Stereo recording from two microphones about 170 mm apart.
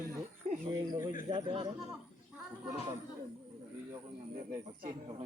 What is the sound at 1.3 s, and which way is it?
Speech, 35° right (ahead or behind).